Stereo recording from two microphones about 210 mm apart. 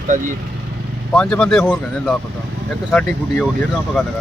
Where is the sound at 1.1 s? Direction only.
5° left (ahead or behind).